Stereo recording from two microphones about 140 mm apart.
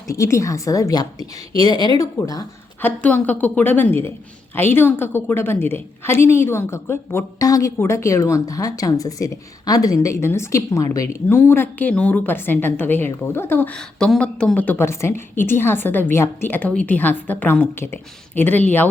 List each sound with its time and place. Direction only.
0.1 s a woman's voice: 20° left (ahead or behind)
2.8 s a woman's voice: 10° left (ahead or behind)